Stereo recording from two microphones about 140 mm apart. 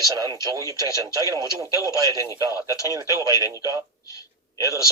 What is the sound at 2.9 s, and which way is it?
Speech, 25° right (ahead or behind).